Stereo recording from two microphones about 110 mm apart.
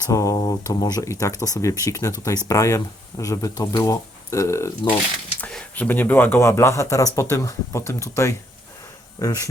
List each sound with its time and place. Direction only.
0.1 s speech: 30° left (ahead or behind)
5.4 s speech: 10° left (ahead or behind); by 9.4 s 30° left (ahead or behind)